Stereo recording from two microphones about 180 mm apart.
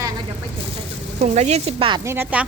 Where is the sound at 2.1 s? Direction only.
10° right (ahead or behind).